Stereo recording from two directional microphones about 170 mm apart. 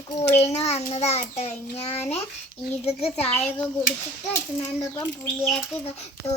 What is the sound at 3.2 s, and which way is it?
Speech, 35° left (ahead or behind).